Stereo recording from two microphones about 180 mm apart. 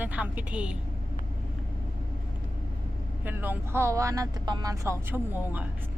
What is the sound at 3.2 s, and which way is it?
Speech, 10° right (ahead or behind).